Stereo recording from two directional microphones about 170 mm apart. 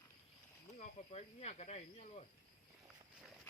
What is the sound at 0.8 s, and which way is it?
Speech, 40° left (ahead or behind).